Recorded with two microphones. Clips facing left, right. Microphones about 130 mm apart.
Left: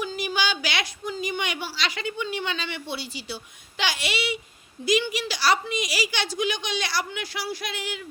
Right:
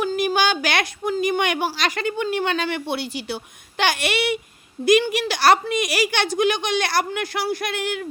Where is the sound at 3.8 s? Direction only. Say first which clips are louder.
Right 6 dB; 55° right (ahead or behind).